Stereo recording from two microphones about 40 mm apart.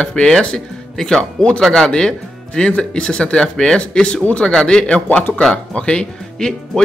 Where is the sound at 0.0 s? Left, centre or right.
Left.